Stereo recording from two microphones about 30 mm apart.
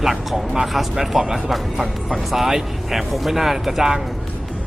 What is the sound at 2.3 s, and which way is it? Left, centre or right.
Speech, centre.